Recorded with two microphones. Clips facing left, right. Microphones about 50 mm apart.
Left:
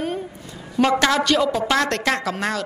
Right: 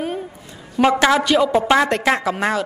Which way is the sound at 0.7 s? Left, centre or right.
Centre.